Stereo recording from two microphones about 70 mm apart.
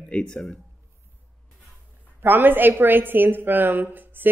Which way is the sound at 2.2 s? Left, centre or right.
Right.